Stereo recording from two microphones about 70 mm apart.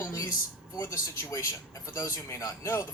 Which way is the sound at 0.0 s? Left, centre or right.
Left.